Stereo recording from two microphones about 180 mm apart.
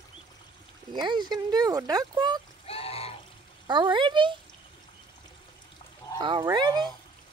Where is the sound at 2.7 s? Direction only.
35° left (ahead or behind).